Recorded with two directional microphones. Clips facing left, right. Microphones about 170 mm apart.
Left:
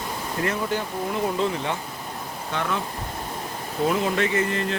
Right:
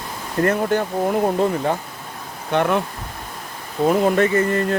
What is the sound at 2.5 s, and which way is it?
Speech, 60° right (ahead or behind).